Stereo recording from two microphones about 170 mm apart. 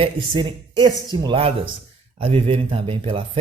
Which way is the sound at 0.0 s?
30° right (ahead or behind).